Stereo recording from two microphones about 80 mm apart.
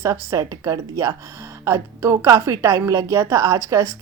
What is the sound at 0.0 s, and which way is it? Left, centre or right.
A woman's voice, right.